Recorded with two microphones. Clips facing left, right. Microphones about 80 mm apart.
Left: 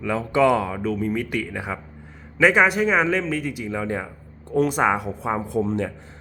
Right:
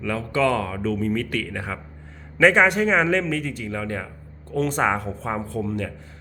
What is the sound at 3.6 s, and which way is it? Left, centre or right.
A man's voice, centre.